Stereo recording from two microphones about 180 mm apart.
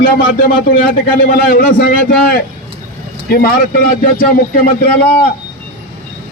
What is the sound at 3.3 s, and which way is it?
Speech, 60° left (ahead or behind).